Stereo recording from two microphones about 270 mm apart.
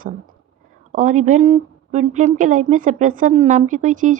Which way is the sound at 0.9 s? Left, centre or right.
Right.